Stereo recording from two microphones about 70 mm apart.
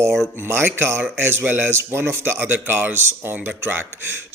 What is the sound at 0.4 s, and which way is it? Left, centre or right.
A man's voice, right.